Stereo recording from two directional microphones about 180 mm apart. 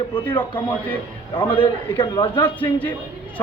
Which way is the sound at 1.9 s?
25° left (ahead or behind).